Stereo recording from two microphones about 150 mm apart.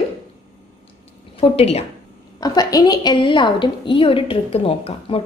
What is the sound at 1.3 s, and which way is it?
Speech, 40° left (ahead or behind).